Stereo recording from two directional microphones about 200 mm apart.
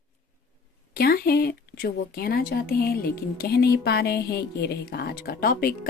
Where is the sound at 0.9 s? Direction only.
50° left (ahead or behind).